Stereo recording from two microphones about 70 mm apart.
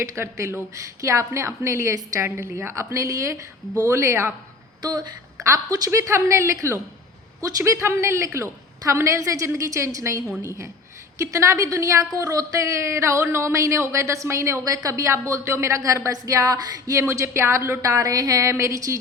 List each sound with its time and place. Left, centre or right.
0.0 s speech: right
2.2 s speech: right
4.8 s speech: right
5.4 s speech: right
14.6 s speech: right